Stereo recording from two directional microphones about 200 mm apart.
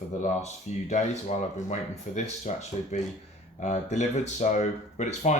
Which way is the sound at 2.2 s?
35° left (ahead or behind).